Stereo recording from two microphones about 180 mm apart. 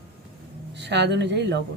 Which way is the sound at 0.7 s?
75° right (ahead or behind).